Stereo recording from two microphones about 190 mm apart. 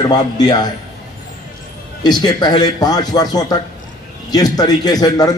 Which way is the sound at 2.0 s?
20° left (ahead or behind).